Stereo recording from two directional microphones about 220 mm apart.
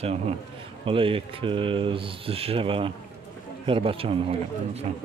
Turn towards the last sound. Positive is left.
turn(degrees=-25)  # may be behind; listen again after turning